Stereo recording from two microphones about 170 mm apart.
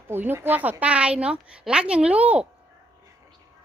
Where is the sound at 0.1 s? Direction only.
10° right (ahead or behind).